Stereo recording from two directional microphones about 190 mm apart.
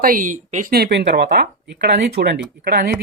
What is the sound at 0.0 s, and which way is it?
Speech, 45° right (ahead or behind).